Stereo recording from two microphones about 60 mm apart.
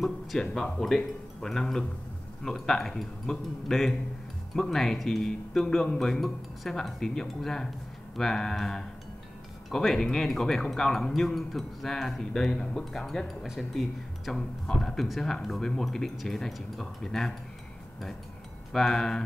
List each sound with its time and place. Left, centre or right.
0.0 s speech: centre
18.7 s speech: centre